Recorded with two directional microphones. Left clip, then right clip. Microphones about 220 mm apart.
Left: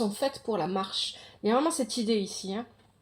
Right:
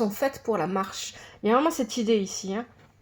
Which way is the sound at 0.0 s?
25° right (ahead or behind).